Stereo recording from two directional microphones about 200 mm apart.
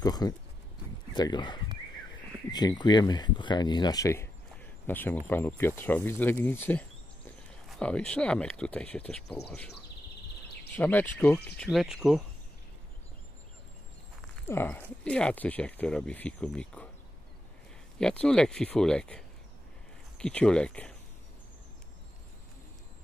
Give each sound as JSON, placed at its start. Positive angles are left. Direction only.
{"t": 0.0, "sound": "speech", "side_deg": 20}
{"t": 10.8, "sound": "speech", "side_deg": 10}
{"t": 14.3, "sound": "speech", "side_deg": 10}
{"t": 17.9, "sound": "speech", "side_deg": 5}